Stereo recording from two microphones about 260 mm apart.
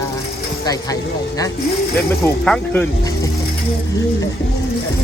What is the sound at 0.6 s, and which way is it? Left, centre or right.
Speech, centre.